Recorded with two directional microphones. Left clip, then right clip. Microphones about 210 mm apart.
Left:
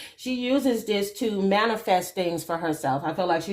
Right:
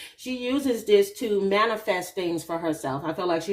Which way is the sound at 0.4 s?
25° left (ahead or behind).